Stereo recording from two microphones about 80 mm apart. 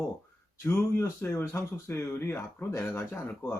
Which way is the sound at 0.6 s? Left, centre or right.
Left.